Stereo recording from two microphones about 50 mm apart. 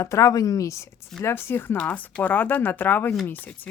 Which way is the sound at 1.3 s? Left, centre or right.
Left.